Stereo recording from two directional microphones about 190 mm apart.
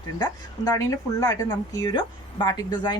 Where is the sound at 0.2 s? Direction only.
20° left (ahead or behind).